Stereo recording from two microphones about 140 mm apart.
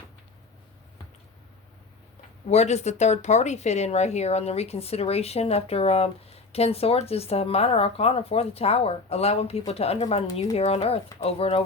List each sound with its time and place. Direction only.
2.5 s speech: 55° left (ahead or behind)